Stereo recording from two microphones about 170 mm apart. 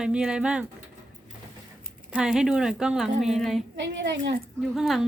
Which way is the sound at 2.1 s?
5° right (ahead or behind).